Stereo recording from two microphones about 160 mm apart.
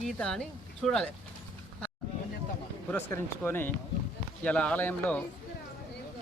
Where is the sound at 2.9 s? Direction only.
10° left (ahead or behind).